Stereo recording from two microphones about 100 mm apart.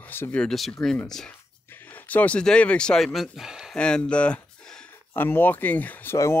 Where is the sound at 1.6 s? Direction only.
20° left (ahead or behind); by 3.7 s 5° right (ahead or behind).